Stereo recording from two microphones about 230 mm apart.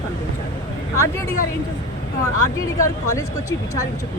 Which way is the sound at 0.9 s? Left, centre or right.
Centre.